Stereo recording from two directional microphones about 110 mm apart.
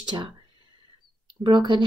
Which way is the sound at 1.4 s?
45° right (ahead or behind).